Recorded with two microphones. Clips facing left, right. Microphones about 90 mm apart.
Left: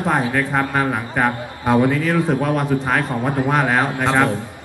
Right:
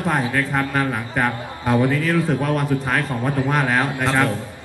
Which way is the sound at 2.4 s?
20° left (ahead or behind).